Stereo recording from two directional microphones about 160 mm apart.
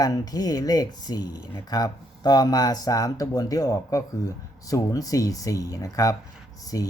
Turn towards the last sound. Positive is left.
turn(degrees=20)  # may be behind; listen again after turning